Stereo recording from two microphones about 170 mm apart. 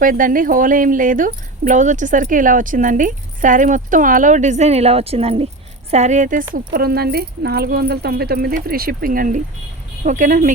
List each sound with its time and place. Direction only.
0.0 s speech: 55° right (ahead or behind)
6.7 s speech: 65° right (ahead or behind)